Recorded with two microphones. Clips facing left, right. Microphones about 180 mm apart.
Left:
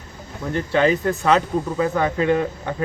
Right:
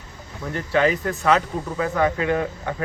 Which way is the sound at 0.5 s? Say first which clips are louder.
Left 2 dB; 25° left (ahead or behind).